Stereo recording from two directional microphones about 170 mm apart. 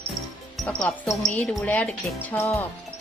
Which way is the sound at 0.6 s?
5° left (ahead or behind).